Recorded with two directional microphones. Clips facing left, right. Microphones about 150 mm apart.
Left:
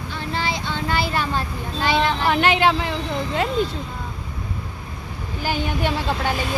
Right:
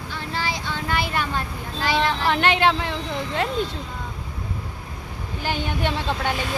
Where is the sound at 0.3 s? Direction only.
25° left (ahead or behind).